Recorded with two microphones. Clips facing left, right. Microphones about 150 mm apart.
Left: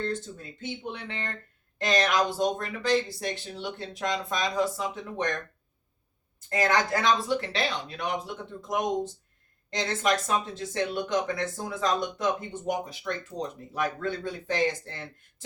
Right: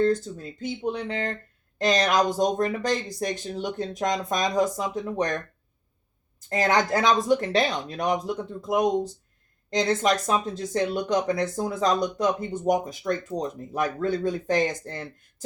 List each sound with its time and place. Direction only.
0.0 s speech: 40° right (ahead or behind)
6.5 s speech: 45° right (ahead or behind)